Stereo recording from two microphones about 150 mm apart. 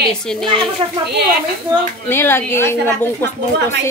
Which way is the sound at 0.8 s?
35° right (ahead or behind).